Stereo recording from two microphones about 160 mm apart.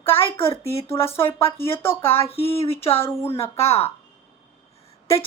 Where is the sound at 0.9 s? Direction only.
15° left (ahead or behind).